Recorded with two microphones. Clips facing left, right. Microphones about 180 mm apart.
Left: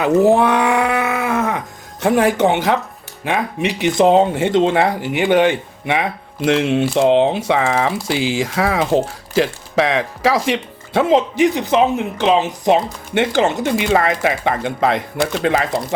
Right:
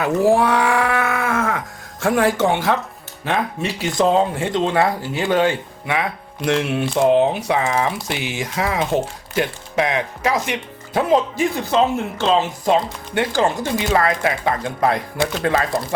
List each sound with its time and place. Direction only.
0.0 s speech: 20° left (ahead or behind)
9.7 s speech: 90° left
10.3 s speech: 30° left (ahead or behind)
11.1 s speech: 20° left (ahead or behind)